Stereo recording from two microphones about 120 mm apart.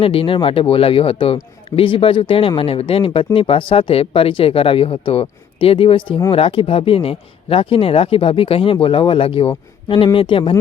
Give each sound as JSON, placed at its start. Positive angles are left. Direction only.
{"t": 0.0, "sound": "speech", "side_deg": 50}